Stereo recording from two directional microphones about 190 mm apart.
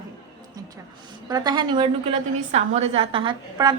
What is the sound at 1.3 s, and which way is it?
A woman's voice, 20° right (ahead or behind).